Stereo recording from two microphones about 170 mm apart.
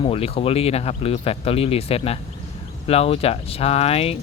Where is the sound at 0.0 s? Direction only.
35° left (ahead or behind).